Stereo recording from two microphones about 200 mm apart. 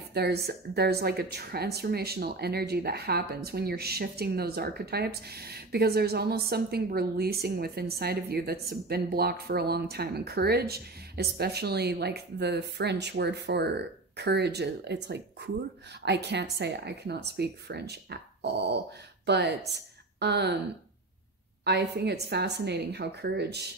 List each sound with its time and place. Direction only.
0.1 s speech: 50° right (ahead or behind)
21.6 s speech: 55° right (ahead or behind)